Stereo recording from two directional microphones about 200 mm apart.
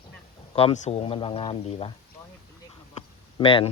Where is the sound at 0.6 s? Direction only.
30° left (ahead or behind).